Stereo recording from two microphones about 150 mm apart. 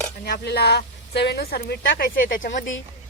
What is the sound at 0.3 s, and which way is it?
A woman's voice, 90° left.